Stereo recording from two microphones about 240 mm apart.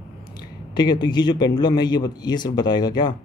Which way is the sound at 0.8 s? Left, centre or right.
Centre.